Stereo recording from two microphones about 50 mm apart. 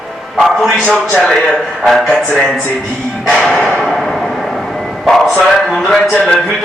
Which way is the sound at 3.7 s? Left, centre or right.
Centre.